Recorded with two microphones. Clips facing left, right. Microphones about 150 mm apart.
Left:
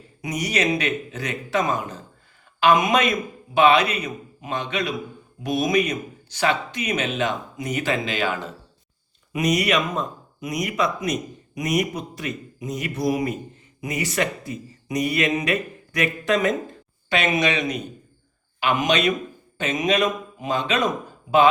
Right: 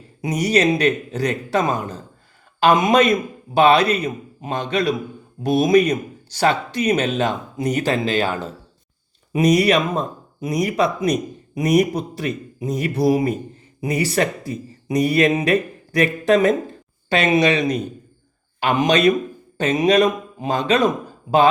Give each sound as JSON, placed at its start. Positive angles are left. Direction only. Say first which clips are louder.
{"t": 0.2, "sound": "speech", "louder": "right 6 dB", "side_deg": -30}